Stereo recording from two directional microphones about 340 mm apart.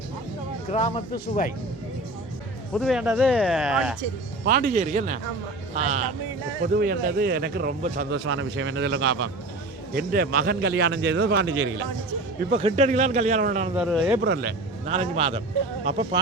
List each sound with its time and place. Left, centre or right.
0.7 s speech: centre
2.7 s speech: centre
4.4 s a man's voice: right
8.1 s a man's voice: right
12.5 s a man's voice: centre
13.7 s speech: centre
14.2 s a man's voice: right
14.8 s a man's voice: centre